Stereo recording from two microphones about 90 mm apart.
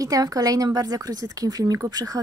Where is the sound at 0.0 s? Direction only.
40° right (ahead or behind).